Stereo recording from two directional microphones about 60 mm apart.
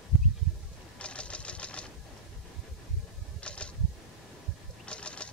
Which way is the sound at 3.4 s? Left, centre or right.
Centre.